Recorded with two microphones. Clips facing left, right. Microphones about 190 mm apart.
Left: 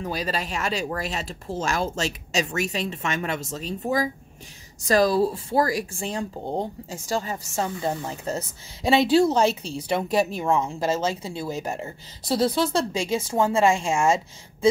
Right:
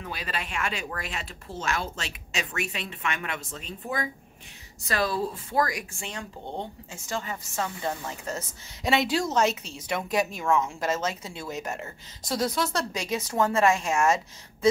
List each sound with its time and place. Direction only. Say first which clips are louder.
0.0 s speech: left 7 dB; 35° left (ahead or behind)